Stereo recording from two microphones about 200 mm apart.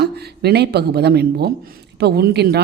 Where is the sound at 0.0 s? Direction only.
55° right (ahead or behind).